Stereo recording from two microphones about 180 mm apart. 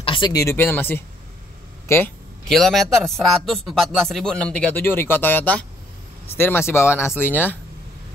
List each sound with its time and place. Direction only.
0.0 s a man's voice: 25° left (ahead or behind); by 7.5 s 10° left (ahead or behind)